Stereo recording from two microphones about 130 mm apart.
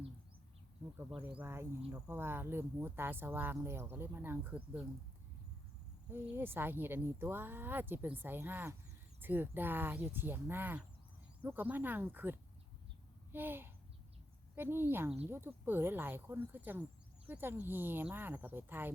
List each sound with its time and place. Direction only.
1.2 s speech: 15° right (ahead or behind)
6.1 s speech: 15° right (ahead or behind)